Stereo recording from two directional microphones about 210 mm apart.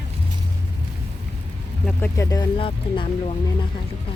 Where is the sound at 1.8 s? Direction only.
10° left (ahead or behind).